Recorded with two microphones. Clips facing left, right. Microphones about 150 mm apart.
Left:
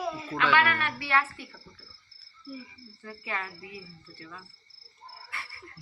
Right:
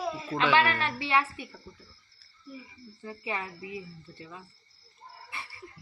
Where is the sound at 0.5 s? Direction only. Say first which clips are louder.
Even; 30° right (ahead or behind).